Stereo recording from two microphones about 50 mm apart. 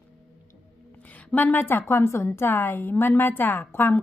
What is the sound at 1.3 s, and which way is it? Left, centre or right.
Speech, left.